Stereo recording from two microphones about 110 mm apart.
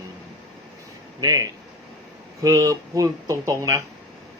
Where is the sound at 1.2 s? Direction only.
35° right (ahead or behind).